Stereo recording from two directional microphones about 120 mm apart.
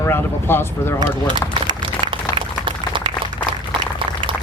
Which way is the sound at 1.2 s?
40° right (ahead or behind).